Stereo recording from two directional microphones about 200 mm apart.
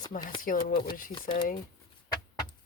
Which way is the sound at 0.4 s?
45° left (ahead or behind).